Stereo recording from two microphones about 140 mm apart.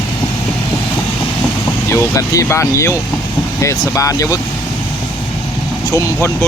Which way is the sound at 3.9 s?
25° left (ahead or behind).